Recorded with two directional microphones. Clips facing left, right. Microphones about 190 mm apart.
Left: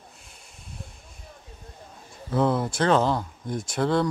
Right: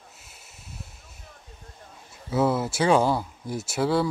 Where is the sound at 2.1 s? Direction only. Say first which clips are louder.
Even; 5° right (ahead or behind).